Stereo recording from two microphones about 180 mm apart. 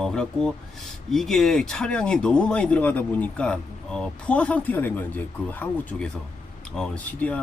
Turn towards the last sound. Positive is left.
turn(degrees=10)  # may be behind; listen again after turning